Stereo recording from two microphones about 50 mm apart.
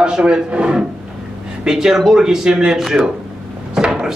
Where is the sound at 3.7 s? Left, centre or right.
Centre.